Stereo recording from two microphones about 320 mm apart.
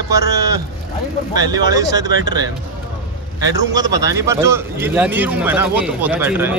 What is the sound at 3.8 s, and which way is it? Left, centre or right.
A man's voice, centre.